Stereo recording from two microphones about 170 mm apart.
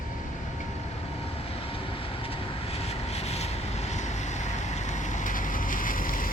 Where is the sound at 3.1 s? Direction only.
40° left (ahead or behind).